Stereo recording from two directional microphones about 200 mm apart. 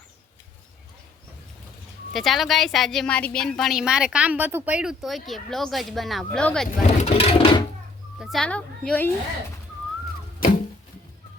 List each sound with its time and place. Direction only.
2.1 s a woman's voice: centre (ahead or behind)
6.8 s a sound: 30° left (ahead or behind)
8.2 s a woman's voice: centre (ahead or behind)